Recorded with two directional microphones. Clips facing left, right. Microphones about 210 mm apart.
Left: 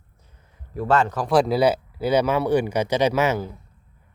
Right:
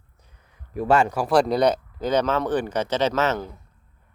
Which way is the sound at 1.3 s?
5° left (ahead or behind).